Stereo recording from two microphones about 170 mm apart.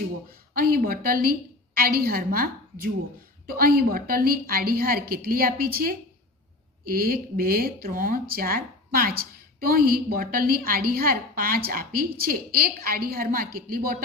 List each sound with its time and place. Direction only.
0.6 s speech: 60° right (ahead or behind)